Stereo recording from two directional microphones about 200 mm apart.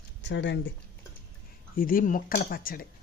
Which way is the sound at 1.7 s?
45° left (ahead or behind).